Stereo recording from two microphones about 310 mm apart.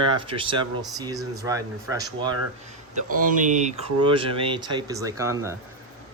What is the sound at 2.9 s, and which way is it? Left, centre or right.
Speech, right.